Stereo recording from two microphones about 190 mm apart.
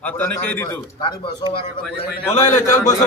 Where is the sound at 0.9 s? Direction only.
25° left (ahead or behind).